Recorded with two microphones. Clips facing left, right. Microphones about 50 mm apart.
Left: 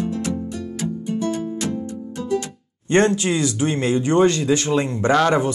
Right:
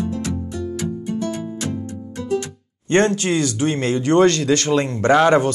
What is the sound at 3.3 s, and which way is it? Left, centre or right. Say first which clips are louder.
Speech: right 1 dB; right.